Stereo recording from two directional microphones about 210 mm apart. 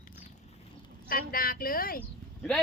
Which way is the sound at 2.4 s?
5° left (ahead or behind).